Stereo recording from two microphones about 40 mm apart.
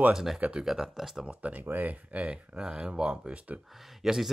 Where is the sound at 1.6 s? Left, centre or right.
Right.